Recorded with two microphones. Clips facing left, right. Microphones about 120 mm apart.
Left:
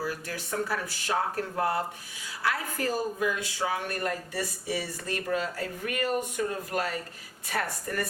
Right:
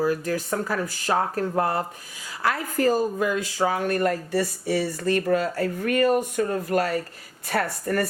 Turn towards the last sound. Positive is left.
turn(degrees=-55)  # may be behind; listen again after turning